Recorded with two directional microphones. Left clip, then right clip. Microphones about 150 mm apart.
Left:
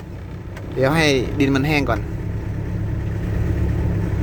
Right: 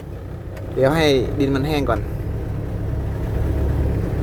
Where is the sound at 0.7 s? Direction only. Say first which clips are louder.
Right 1 dB; centre (ahead or behind).